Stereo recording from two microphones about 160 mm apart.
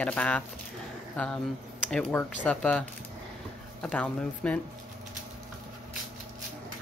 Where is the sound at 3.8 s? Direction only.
5° left (ahead or behind).